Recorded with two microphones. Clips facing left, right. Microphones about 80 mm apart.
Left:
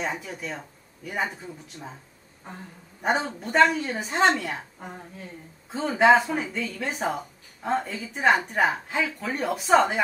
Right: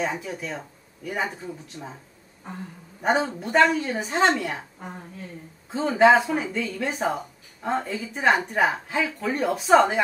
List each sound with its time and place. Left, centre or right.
0.0 s a woman's voice: centre
3.0 s a woman's voice: centre